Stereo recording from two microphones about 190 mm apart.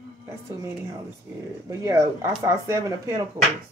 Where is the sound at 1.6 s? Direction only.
15° right (ahead or behind).